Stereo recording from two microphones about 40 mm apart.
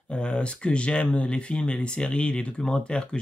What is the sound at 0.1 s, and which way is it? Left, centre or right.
Speech, left.